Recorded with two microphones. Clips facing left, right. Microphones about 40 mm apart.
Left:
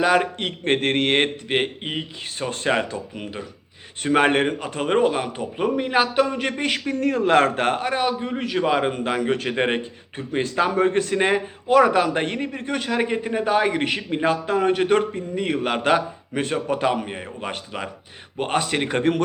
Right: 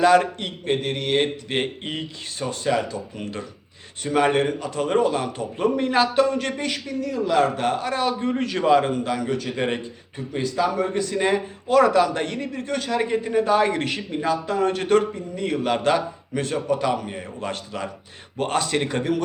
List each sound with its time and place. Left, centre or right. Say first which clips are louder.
0.0 s speech: right 2 dB; centre
0.6 s speech: left 4 dB; left
1.8 s speech: left 1 dB; centre
2.5 s a man's voice: left 1 dB; left
3.2 s speech: right 1 dB; centre
4.0 s a man's voice: left 2 dB; left
5.2 s a man's voice: right 1 dB; centre
6.6 s speech: left 4 dB; left
7.9 s a man's voice: left 1 dB; left
8.2 s speech: right 1 dB; centre
8.6 s a man's voice: right 4 dB; centre
8.9 s a man's voice: left 2 dB; left
18.9 s a man's voice: left 3 dB; left